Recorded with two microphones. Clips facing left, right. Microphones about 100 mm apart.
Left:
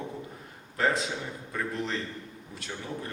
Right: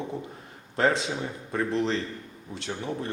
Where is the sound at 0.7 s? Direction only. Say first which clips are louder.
Right 3 dB; 30° right (ahead or behind).